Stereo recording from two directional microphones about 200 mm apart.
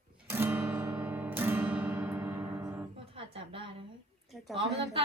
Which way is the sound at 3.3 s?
25° right (ahead or behind).